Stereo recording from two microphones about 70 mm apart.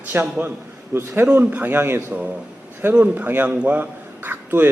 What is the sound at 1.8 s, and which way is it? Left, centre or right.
A man's voice, right.